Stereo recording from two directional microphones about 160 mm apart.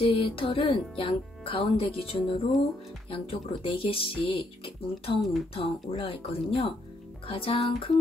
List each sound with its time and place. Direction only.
0.0 s speech: 35° left (ahead or behind)